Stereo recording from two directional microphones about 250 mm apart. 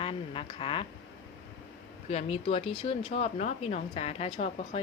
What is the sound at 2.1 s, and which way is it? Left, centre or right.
Speech, left.